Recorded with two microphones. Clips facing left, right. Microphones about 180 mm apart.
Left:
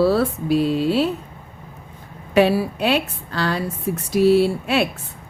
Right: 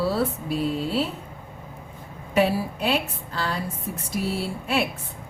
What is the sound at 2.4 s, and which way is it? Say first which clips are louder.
Speech: left 5 dB; 80° left.